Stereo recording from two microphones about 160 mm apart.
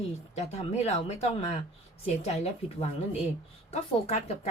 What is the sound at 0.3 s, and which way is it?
A woman's voice, 40° left (ahead or behind).